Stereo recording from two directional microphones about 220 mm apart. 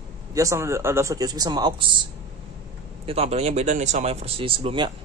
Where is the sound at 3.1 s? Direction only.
30° right (ahead or behind).